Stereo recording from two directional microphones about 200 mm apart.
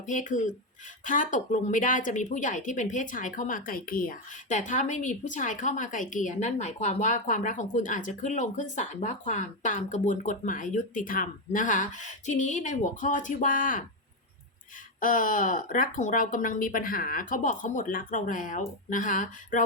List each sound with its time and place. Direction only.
0.0 s speech: 40° left (ahead or behind)
15.0 s speech: 40° left (ahead or behind)